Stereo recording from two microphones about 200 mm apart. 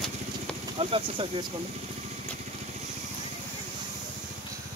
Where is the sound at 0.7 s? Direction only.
25° right (ahead or behind).